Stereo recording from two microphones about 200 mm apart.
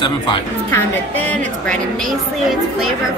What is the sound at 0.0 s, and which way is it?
Speech, 25° left (ahead or behind).